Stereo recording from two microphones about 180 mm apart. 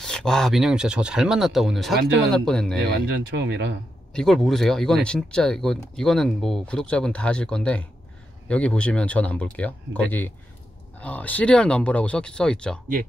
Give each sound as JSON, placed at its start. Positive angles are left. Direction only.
{"t": 0.0, "sound": "speech", "side_deg": 5}
{"t": 2.8, "sound": "speech", "side_deg": -75}
{"t": 4.1, "sound": "speech", "side_deg": 5}